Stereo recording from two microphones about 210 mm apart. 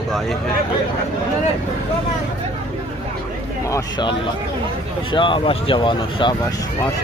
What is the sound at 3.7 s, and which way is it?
Speech, 20° left (ahead or behind).